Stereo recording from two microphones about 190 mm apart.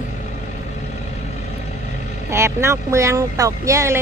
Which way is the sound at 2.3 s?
15° right (ahead or behind).